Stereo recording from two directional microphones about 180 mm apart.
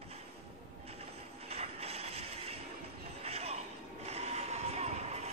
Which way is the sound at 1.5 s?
35° right (ahead or behind).